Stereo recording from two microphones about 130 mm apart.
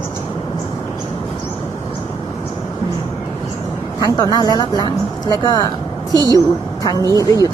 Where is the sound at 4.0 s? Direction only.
30° left (ahead or behind).